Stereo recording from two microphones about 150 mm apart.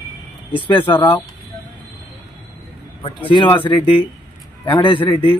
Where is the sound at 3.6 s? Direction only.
35° left (ahead or behind).